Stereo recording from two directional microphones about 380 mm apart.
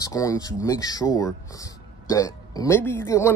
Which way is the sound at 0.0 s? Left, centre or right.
Centre.